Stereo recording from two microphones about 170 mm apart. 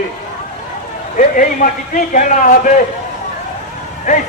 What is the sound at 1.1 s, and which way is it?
A man's voice, 50° left (ahead or behind).